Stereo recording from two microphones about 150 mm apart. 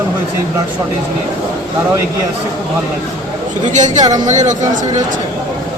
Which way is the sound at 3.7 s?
55° right (ahead or behind).